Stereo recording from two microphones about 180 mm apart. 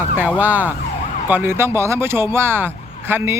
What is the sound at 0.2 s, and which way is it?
Speech, 10° right (ahead or behind).